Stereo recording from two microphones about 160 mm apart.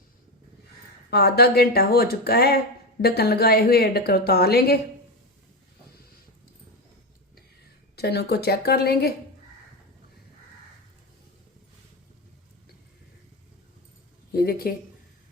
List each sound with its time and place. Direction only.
1.1 s a woman's voice: 80° left
7.9 s a woman's voice: 90° left
14.3 s a woman's voice: 70° left (ahead or behind)